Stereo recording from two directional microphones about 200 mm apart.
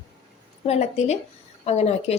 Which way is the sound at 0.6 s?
35° left (ahead or behind).